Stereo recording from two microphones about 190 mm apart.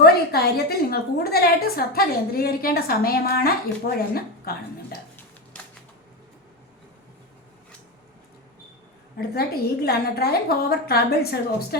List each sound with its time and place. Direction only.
0.0 s a woman's voice: 55° left (ahead or behind)
9.2 s a woman's voice: 55° left (ahead or behind)